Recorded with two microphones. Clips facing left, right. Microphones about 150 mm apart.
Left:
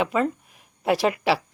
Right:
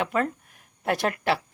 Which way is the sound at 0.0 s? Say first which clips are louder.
Left 3 dB; centre (ahead or behind).